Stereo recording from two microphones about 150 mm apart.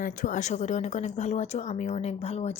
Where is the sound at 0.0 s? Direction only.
60° left (ahead or behind).